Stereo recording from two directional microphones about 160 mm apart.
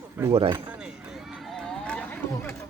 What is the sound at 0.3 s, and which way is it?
Speech, 35° right (ahead or behind).